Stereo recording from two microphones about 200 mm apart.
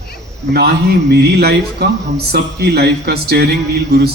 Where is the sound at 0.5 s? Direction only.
55° right (ahead or behind).